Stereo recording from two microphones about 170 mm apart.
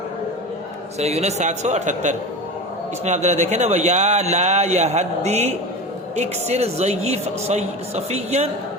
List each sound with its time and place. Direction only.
0.9 s speech: 40° right (ahead or behind)